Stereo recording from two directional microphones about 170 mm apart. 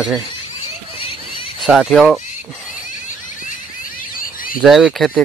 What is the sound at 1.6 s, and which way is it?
Speech, centre (ahead or behind).